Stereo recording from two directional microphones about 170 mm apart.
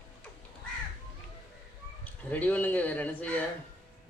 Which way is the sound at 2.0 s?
10° left (ahead or behind).